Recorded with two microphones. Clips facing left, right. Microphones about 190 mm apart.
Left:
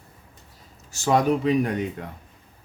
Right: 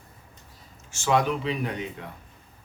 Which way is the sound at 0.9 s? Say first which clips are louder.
Left 3 dB; 40° left (ahead or behind).